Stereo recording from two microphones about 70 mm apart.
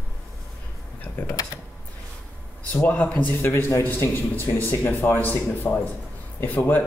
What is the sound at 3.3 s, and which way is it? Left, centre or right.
A man's voice, left.